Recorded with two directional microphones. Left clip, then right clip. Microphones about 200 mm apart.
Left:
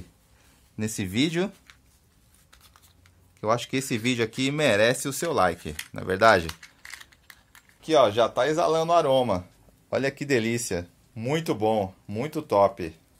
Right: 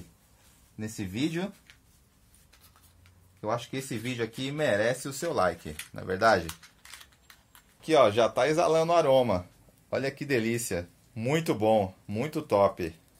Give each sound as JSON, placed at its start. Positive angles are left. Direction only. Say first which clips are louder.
{"t": 0.7, "sound": "speech", "louder": "left 7 dB", "side_deg": 55}
{"t": 3.3, "sound": "speech", "louder": "left 6 dB", "side_deg": 55}
{"t": 7.8, "sound": "speech", "louder": "left 2 dB", "side_deg": 5}
{"t": 9.8, "sound": "speech", "louder": "left 4 dB", "side_deg": 25}
{"t": 11.1, "sound": "speech", "louder": "left 1 dB", "side_deg": 5}